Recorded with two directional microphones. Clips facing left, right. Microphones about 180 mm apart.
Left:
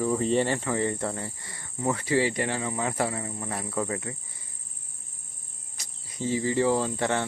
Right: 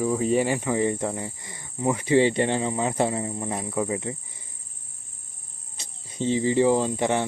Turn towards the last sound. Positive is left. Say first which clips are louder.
# right 3 dB
turn(degrees=-15)  # may be behind; listen again after turning